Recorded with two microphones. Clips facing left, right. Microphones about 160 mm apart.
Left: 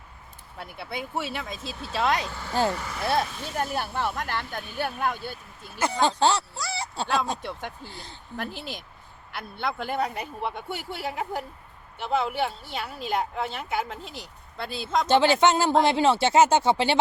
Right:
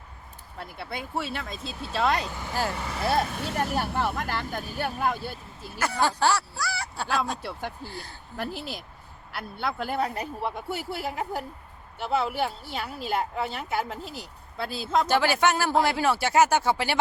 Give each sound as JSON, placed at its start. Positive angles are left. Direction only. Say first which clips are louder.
{"t": 0.6, "sound": "speech", "louder": "left 1 dB", "side_deg": 0}
{"t": 2.7, "sound": "speech", "louder": "right 1 dB", "side_deg": -30}
{"t": 3.2, "sound": "speech", "louder": "right 2 dB", "side_deg": -65}
{"t": 3.8, "sound": "speech", "louder": "right 1 dB", "side_deg": -5}
{"t": 5.8, "sound": "speech", "louder": "left 2 dB", "side_deg": 20}
{"t": 8.4, "sound": "speech", "louder": "right 1 dB", "side_deg": -5}
{"t": 15.0, "sound": "speech", "louder": "left 6 dB", "side_deg": 20}